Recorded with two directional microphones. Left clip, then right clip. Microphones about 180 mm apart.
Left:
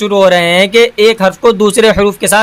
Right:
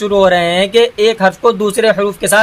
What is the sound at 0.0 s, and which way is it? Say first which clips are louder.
Speech: left 2 dB; 20° left (ahead or behind).